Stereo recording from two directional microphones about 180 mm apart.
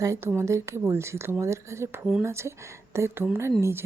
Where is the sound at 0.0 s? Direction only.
15° right (ahead or behind).